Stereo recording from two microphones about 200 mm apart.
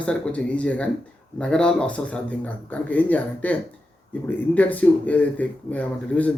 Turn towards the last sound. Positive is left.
turn(degrees=5)  # may be behind; listen again after turning